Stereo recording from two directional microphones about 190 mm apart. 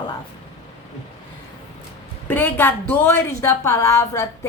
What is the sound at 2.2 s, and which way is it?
A woman's voice, 10° left (ahead or behind).